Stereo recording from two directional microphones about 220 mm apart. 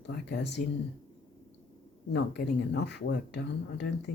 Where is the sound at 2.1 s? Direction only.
50° left (ahead or behind).